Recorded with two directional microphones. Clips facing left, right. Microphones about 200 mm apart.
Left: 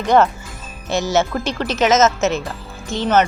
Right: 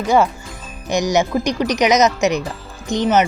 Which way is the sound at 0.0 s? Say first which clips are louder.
Left 1 dB; 10° right (ahead or behind).